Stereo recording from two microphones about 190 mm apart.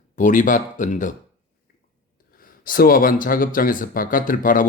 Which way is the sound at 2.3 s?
50° left (ahead or behind).